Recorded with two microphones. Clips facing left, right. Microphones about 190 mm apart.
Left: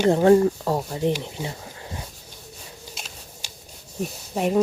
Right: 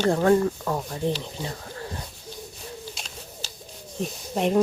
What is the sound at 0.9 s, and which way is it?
Speech, 15° left (ahead or behind).